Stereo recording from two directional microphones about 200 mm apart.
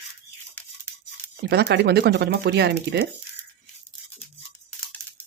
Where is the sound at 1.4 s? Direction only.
55° right (ahead or behind).